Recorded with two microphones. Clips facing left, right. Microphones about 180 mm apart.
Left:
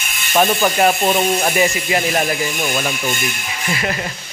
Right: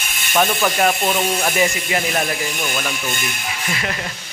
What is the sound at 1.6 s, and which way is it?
Speech, 5° left (ahead or behind).